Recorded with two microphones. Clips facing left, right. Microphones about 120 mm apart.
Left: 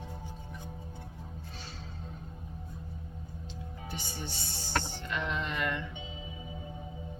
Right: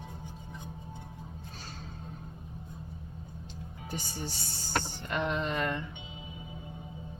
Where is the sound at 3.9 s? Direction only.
40° right (ahead or behind).